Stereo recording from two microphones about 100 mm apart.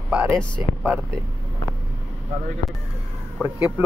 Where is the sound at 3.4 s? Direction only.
15° right (ahead or behind).